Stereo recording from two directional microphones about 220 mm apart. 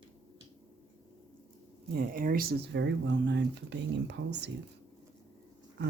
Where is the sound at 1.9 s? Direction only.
40° right (ahead or behind).